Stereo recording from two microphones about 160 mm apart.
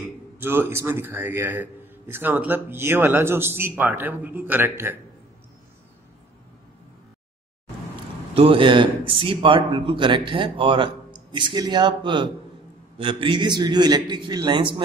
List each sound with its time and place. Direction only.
0.4 s a man's voice: 15° right (ahead or behind)
7.9 s a man's voice: 35° right (ahead or behind)